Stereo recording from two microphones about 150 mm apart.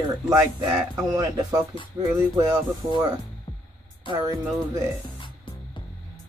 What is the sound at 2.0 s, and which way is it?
Speech, 25° right (ahead or behind).